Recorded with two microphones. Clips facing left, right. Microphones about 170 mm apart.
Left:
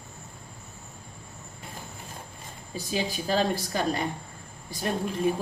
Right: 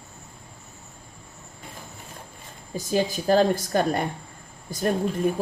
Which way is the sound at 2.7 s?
45° right (ahead or behind).